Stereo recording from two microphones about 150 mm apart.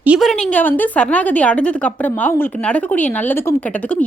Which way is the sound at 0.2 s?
5° left (ahead or behind).